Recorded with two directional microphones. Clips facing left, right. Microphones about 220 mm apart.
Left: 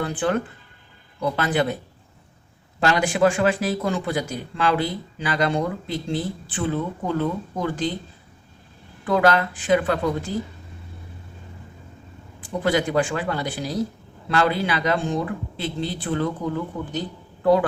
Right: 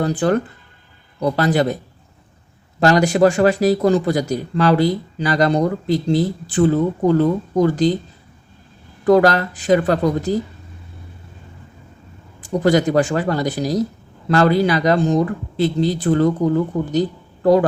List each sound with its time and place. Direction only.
0.0 s speech: 40° right (ahead or behind)
2.8 s speech: 40° right (ahead or behind)
9.0 s speech: 40° right (ahead or behind)
12.4 s speech: 40° right (ahead or behind)